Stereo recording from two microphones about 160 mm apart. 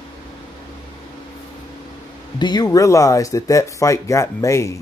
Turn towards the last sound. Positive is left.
turn(degrees=20)  # may be behind; listen again after turning